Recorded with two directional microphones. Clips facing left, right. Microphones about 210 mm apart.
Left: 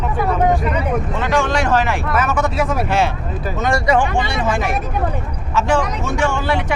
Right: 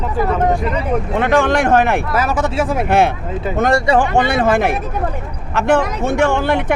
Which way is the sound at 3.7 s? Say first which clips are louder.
Right 1 dB; 30° right (ahead or behind).